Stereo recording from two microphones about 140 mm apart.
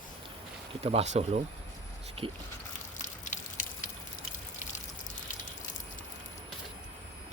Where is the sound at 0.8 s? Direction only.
50° right (ahead or behind).